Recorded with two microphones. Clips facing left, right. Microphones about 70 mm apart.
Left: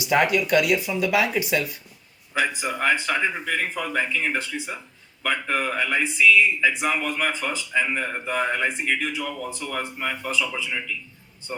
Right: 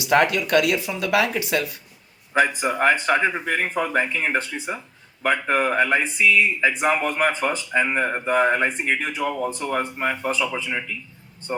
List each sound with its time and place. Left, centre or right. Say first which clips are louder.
0.0 s speech: right 2 dB; right
2.3 s speech: right 5 dB; right